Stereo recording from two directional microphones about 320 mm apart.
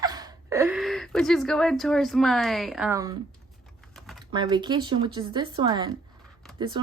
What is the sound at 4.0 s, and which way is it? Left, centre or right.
Typing, centre.